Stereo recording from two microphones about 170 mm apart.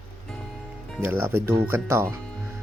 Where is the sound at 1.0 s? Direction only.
10° right (ahead or behind).